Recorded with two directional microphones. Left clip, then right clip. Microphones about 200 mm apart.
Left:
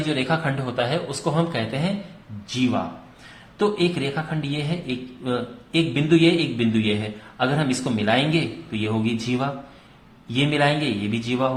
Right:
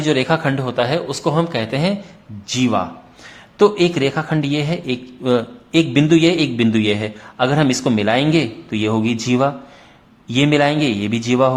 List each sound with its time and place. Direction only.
0.0 s a man's voice: 40° right (ahead or behind)